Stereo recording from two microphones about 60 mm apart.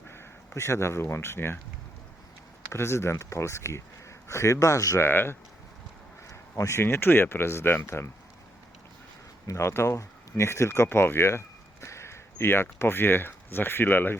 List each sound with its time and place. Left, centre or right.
0.1 s speech: left
2.7 s speech: left
4.9 s speech: left
6.2 s speech: left
9.5 s speech: left